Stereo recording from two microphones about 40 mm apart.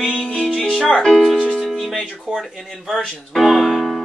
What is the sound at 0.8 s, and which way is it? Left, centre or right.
Speech, centre.